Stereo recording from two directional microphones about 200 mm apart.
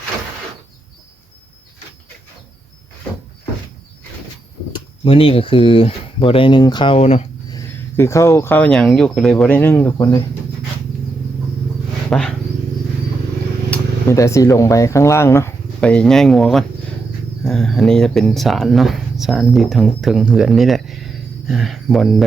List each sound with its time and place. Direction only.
5.0 s speech: 25° left (ahead or behind)
7.5 s speech: 15° left (ahead or behind)
12.1 s speech: 5° left (ahead or behind)
13.7 s speech: 15° left (ahead or behind)